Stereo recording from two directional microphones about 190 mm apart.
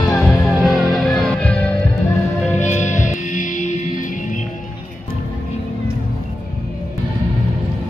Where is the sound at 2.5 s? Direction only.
40° left (ahead or behind).